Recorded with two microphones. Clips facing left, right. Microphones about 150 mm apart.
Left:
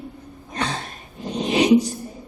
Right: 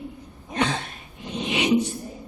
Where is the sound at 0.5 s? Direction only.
35° left (ahead or behind).